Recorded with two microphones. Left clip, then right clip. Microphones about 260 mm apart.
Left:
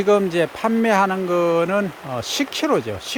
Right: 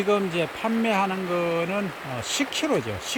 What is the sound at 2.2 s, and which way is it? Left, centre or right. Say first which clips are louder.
Speech: left 3 dB; centre.